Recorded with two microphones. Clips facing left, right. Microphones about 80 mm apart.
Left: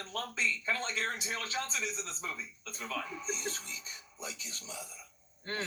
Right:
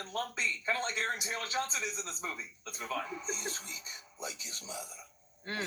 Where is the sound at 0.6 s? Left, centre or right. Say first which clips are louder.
Right 1 dB; right.